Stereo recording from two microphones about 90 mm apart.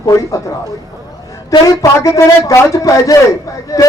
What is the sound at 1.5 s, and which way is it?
A man's voice, 40° left (ahead or behind).